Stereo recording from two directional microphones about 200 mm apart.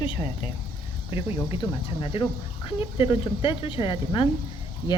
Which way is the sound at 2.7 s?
25° left (ahead or behind).